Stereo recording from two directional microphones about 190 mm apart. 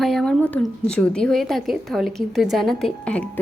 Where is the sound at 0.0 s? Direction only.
Centre (ahead or behind).